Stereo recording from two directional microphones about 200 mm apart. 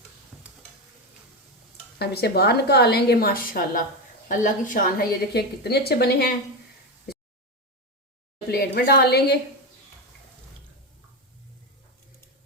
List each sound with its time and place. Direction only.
2.0 s a woman's voice: 55° left (ahead or behind)
8.4 s a woman's voice: 50° left (ahead or behind)